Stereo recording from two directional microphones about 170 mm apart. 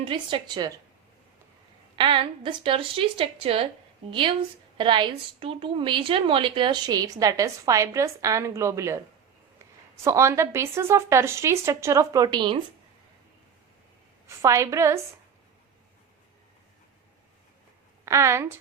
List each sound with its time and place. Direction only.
0.1 s a woman's voice: 30° right (ahead or behind)
2.0 s a woman's voice: 30° right (ahead or behind)
14.3 s speech: 15° right (ahead or behind)
18.0 s a woman's voice: 15° right (ahead or behind)